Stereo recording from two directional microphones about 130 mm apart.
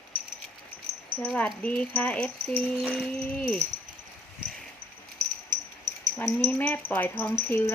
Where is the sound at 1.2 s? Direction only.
5° left (ahead or behind).